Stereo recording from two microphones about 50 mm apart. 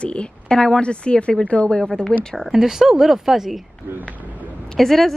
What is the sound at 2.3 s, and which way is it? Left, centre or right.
A woman's voice, centre.